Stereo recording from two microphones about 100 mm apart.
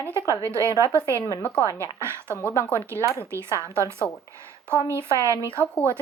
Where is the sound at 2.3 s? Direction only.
25° left (ahead or behind).